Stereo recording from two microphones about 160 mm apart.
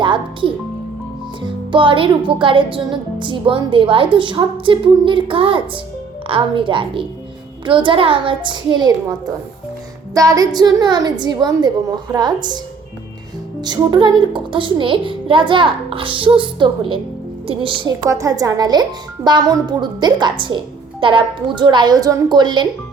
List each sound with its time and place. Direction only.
0.0 s a woman's voice: 30° right (ahead or behind)
13.7 s speech: 25° right (ahead or behind)
18.0 s a woman's voice: 20° right (ahead or behind)